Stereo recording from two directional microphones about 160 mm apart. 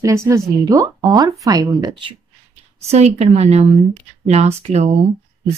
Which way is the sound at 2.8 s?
40° right (ahead or behind).